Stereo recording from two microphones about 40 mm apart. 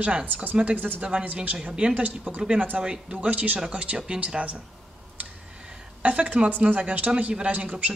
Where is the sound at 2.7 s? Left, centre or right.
Right.